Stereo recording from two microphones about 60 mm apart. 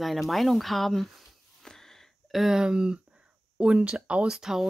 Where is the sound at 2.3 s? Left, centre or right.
Centre.